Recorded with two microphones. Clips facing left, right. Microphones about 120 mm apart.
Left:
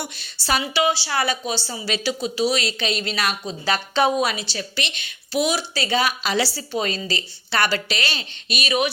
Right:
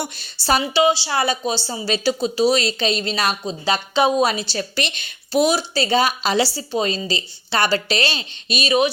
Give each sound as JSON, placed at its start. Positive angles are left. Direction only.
{"t": 0.4, "sound": "speech", "side_deg": -35}
{"t": 3.9, "sound": "a woman's voice", "side_deg": -15}
{"t": 4.2, "sound": "speech", "side_deg": -35}